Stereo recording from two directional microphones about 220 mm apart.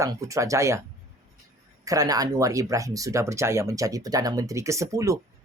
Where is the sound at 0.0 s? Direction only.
15° right (ahead or behind).